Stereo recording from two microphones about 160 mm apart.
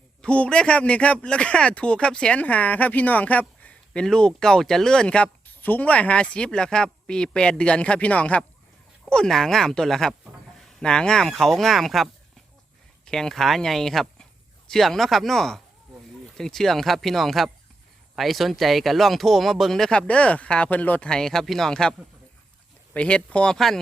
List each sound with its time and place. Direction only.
0.2 s a man's voice: 5° left (ahead or behind)
13.1 s speech: 5° left (ahead or behind)
23.0 s a man's voice: 5° left (ahead or behind)